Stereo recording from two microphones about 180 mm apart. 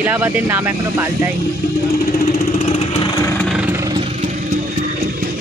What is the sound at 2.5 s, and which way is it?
Vehicle, 35° left (ahead or behind).